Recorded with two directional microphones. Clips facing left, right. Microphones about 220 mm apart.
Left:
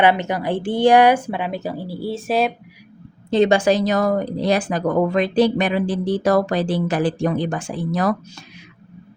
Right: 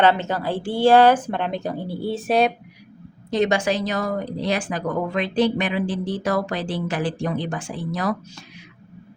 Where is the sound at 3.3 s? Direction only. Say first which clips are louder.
Left 5 dB; 30° left (ahead or behind); by 8.1 s 45° left (ahead or behind).